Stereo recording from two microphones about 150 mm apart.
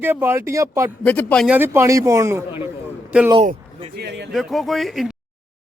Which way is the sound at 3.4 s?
80° right.